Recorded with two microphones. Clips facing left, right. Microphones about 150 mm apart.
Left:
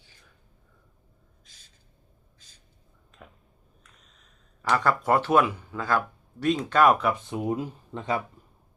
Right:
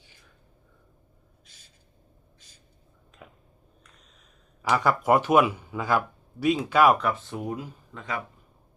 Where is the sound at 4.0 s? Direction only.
Centre (ahead or behind).